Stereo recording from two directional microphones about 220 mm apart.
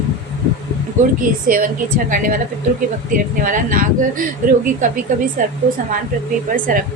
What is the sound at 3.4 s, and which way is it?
Speech, 40° right (ahead or behind).